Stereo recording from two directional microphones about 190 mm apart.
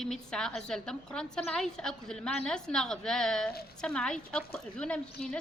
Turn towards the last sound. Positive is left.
turn(degrees=5)  # may be behind; listen again after turning